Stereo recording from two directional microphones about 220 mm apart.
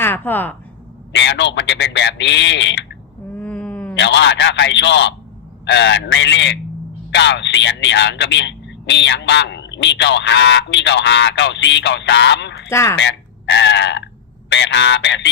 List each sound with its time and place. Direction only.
0.0 s speech: 10° left (ahead or behind)
1.1 s speech: 50° left (ahead or behind)
3.3 s wail: 5° left (ahead or behind)
3.9 s speech: 55° left (ahead or behind)
12.7 s speech: 10° left (ahead or behind)
13.0 s speech: 55° left (ahead or behind)